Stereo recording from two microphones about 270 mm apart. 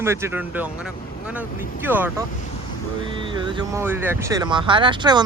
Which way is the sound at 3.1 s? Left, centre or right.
Centre.